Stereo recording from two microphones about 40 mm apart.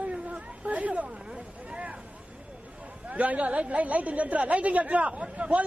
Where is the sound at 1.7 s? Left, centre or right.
Right.